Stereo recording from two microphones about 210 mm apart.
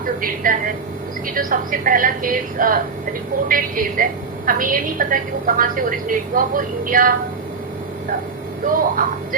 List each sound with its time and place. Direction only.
0.2 s a woman's voice: 40° right (ahead or behind)
8.6 s a woman's voice: 40° right (ahead or behind)